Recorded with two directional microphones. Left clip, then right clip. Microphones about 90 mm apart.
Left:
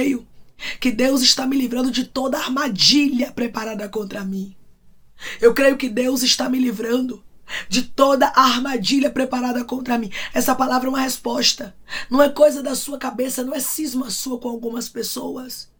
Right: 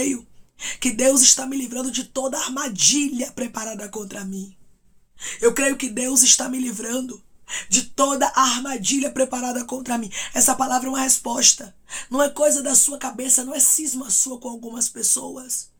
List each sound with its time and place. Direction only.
0.6 s speech: 35° right (ahead or behind)
5.2 s speech: 20° right (ahead or behind); by 15.5 s 40° right (ahead or behind)